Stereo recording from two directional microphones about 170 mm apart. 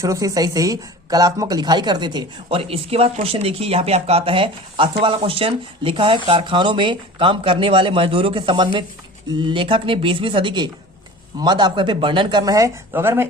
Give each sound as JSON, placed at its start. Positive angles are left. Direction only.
{"t": 0.0, "sound": "a woman's voice", "side_deg": -20}